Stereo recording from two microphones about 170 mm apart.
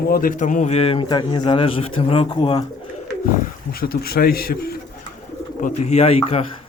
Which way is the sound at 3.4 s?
60° left (ahead or behind).